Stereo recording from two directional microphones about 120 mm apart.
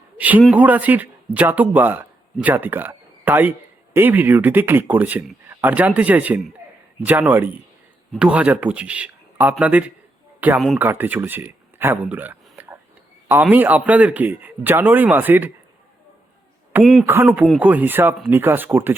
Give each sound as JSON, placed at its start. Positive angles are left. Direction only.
{"t": 0.2, "sound": "a man's voice", "side_deg": -15}
{"t": 16.8, "sound": "speech", "side_deg": 0}
{"t": 17.1, "sound": "a man's voice", "side_deg": -15}